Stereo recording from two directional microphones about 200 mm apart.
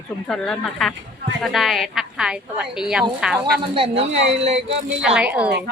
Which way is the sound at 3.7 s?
30° right (ahead or behind).